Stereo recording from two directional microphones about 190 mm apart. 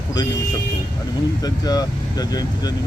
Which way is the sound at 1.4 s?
20° left (ahead or behind).